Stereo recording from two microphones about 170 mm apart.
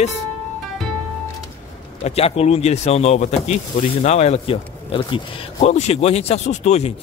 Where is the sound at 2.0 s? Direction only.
35° left (ahead or behind).